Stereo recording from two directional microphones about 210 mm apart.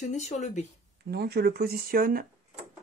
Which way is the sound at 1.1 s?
50° right (ahead or behind).